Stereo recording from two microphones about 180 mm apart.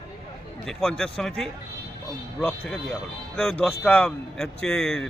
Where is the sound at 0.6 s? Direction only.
Centre (ahead or behind).